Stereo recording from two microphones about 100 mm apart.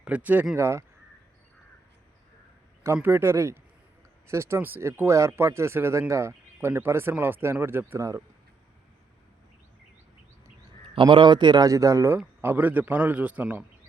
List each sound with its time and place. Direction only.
0.0 s a man's voice: 15° right (ahead or behind)
0.5 s speech: 25° right (ahead or behind)
2.8 s speech: 25° right (ahead or behind)
10.8 s a man's voice: 60° right (ahead or behind)
11.7 s speech: 35° right (ahead or behind)
12.1 s a man's voice: 20° right (ahead or behind)